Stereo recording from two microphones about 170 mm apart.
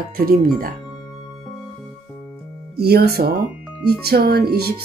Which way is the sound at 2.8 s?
70° right (ahead or behind).